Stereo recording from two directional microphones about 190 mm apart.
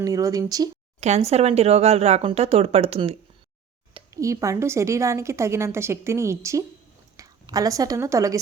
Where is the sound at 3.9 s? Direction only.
15° right (ahead or behind).